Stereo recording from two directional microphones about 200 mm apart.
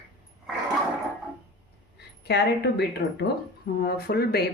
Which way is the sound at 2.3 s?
55° left (ahead or behind).